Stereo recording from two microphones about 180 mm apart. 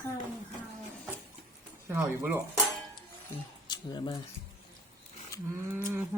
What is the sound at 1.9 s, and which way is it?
Speech, 10° right (ahead or behind).